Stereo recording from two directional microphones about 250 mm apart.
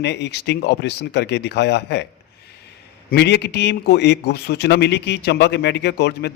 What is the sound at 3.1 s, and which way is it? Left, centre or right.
A man's voice, left.